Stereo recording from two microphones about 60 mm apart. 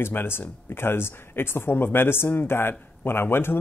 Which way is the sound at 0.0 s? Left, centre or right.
Left.